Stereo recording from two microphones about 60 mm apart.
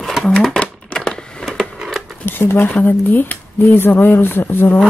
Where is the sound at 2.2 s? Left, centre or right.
Left.